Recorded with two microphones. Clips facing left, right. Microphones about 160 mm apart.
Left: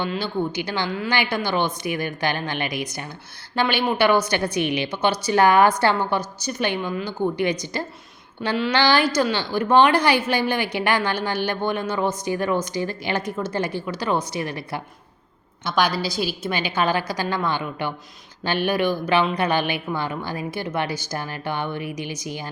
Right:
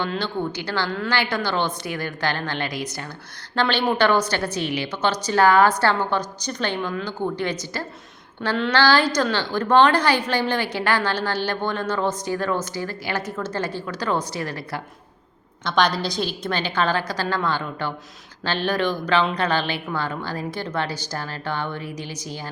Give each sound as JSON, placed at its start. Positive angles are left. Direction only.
{"t": 0.0, "sound": "a woman's voice", "side_deg": 10}
{"t": 8.4, "sound": "a woman's voice", "side_deg": 5}
{"t": 15.6, "sound": "a woman's voice", "side_deg": 5}